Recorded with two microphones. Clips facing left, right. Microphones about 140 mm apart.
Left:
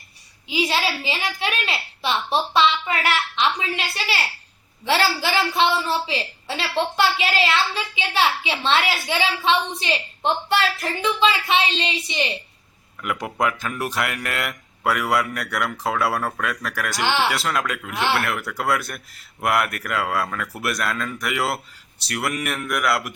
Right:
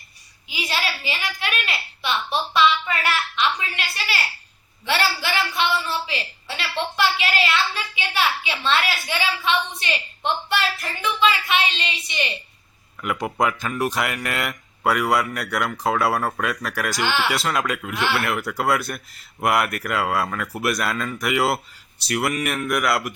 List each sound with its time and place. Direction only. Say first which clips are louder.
0.4 s a woman's voice: left 5 dB; 30° left (ahead or behind)
13.0 s speech: right 1 dB; centre (ahead or behind)
17.0 s a woman's voice: left 2 dB; 25° left (ahead or behind)
17.2 s speech: right 1 dB; centre (ahead or behind)